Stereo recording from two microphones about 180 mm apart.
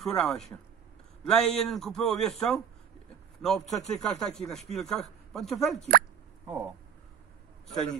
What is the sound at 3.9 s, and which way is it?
A man's voice, 5° left (ahead or behind).